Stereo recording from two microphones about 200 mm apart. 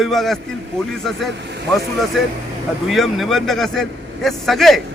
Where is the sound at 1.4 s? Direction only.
60° right (ahead or behind).